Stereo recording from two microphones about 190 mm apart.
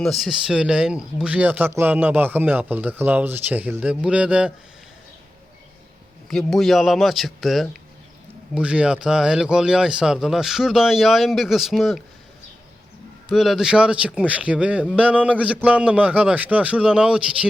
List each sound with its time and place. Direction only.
0.0 s speech: centre (ahead or behind)
6.2 s speech: centre (ahead or behind)
13.3 s speech: centre (ahead or behind)